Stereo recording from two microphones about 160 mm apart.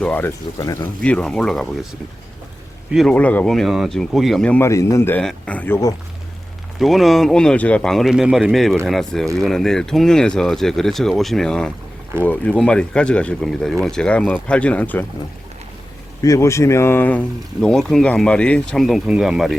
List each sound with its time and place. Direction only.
0.0 s speech: 10° left (ahead or behind)
1.0 s speech: 5° left (ahead or behind)
2.9 s speech: centre (ahead or behind)
6.7 s speech: centre (ahead or behind)
16.2 s speech: 20° left (ahead or behind); by 19.5 s centre (ahead or behind)